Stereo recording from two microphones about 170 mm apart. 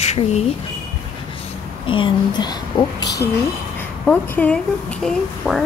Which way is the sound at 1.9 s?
30° left (ahead or behind).